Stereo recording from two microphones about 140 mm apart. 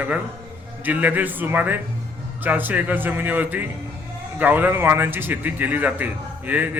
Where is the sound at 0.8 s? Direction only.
10° right (ahead or behind).